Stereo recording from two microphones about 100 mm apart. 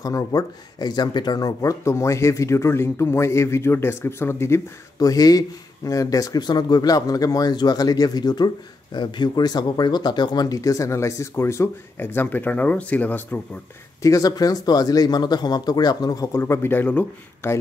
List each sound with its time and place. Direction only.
0.0 s speech: 35° left (ahead or behind)
4.9 s speech: 35° left (ahead or behind); by 13.4 s 15° left (ahead or behind)
14.0 s speech: 35° left (ahead or behind); by 17.6 s 20° left (ahead or behind)